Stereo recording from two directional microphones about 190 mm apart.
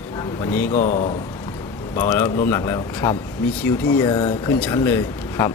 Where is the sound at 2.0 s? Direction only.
15° left (ahead or behind).